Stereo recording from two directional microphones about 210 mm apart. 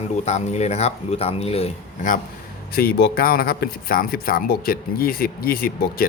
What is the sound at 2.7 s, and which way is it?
Speech, 45° left (ahead or behind).